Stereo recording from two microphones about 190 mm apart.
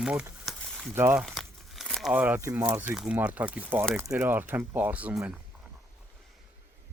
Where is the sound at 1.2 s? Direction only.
Centre (ahead or behind).